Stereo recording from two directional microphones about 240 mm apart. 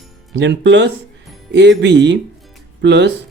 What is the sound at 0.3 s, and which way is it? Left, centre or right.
Speech, right.